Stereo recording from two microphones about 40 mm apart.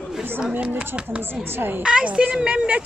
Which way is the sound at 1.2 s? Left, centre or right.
Right.